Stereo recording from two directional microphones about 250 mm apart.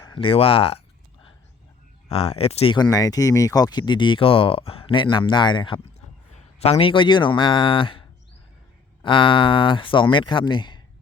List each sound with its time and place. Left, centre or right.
0.0 s speech: centre
2.0 s speech: left